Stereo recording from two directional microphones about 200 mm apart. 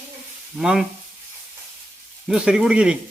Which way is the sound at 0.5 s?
Centre (ahead or behind).